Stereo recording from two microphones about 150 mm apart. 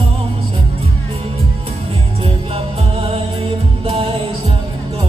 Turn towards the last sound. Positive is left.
turn(degrees=-40)  # may be behind; listen again after turning